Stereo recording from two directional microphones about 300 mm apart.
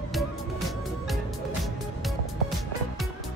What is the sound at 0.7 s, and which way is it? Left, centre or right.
Music, centre.